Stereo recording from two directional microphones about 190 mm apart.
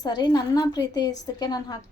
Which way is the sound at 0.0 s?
20° left (ahead or behind).